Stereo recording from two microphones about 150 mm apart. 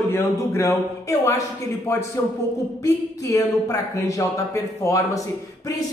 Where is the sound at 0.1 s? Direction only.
15° left (ahead or behind).